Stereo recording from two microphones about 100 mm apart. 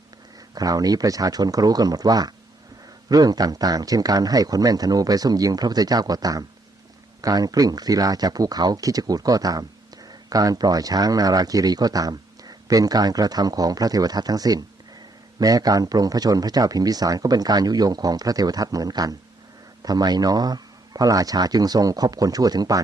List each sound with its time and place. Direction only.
0.5 s speech: 40° right (ahead or behind)